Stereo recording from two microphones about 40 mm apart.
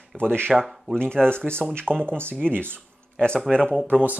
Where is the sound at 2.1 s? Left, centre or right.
Right.